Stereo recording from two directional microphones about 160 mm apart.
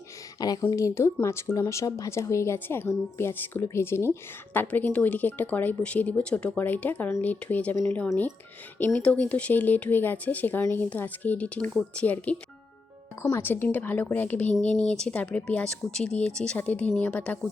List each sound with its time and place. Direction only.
0.3 s speech: 25° left (ahead or behind); by 17.5 s 10° left (ahead or behind)